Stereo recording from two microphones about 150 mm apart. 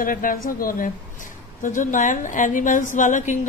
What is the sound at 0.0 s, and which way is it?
A woman's voice, 65° left (ahead or behind).